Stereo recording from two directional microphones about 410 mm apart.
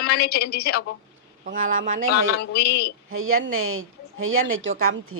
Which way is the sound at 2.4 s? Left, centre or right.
Left.